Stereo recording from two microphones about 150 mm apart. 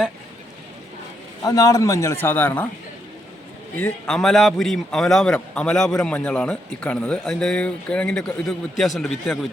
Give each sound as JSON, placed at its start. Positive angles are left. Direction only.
{"t": 1.5, "sound": "a man's voice", "side_deg": 25}
{"t": 3.8, "sound": "a man's voice", "side_deg": 10}